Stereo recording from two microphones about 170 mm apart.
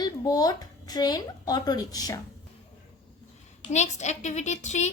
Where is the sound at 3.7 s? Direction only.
40° left (ahead or behind).